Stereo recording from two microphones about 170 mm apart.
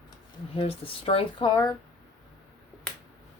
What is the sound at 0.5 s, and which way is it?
Speech, 35° left (ahead or behind).